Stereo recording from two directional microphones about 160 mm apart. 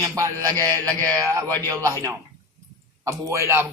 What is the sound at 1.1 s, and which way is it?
Music, 20° right (ahead or behind).